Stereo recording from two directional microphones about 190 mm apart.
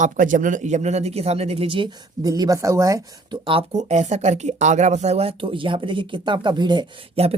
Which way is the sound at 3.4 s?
30° right (ahead or behind).